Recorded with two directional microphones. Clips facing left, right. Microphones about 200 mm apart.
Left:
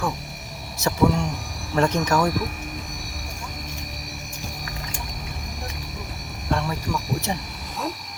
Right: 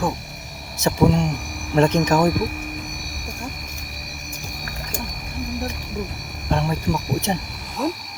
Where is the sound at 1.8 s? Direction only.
20° right (ahead or behind).